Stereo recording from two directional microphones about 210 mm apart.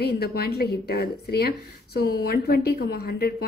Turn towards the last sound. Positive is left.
turn(degrees=50)  # may be behind; listen again after turning